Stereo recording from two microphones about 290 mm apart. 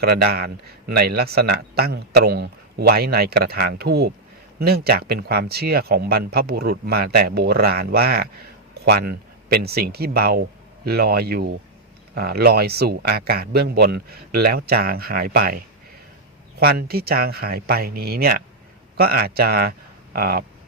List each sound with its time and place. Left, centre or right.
0.0 s speech: right